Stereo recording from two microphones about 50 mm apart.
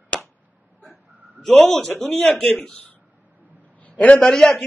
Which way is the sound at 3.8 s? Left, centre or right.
Left.